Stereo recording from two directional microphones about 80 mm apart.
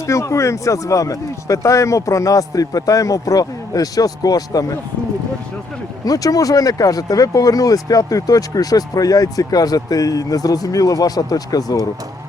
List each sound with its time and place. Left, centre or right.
0.0 s speech: left
6.1 s speech: left